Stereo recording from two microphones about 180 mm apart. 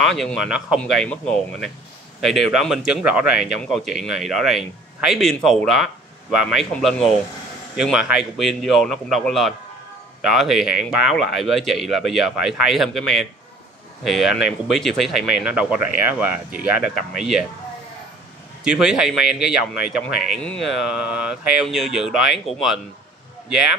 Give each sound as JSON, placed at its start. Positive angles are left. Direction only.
{"t": 0.0, "sound": "a man's voice", "side_deg": 0}
{"t": 18.6, "sound": "a man's voice", "side_deg": -5}